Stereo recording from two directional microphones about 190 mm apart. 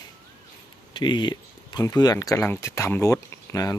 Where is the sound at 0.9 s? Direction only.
25° left (ahead or behind).